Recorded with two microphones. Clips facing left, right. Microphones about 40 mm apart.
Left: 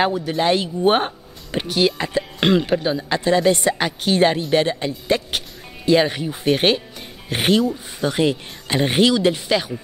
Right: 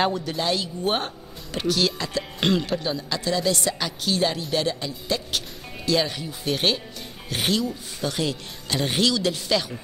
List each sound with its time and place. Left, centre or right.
0.0 s speech: centre
0.4 s speech: left